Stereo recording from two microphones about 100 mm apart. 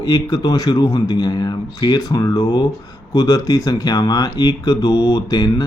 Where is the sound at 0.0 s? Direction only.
40° left (ahead or behind).